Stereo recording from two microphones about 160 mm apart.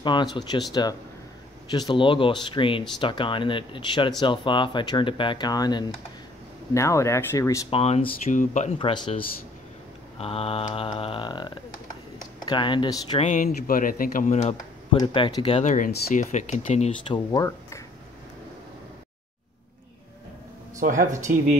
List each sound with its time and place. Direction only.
0.0 s speech: 25° left (ahead or behind)
7.7 s speech: 40° left (ahead or behind)
8.7 s speech: 30° left (ahead or behind)
13.2 s speech: 50° left (ahead or behind)
14.9 s speech: 30° left (ahead or behind)
15.4 s speech: 45° left (ahead or behind)
17.1 s speech: 25° left (ahead or behind)
20.8 s speech: 55° right (ahead or behind)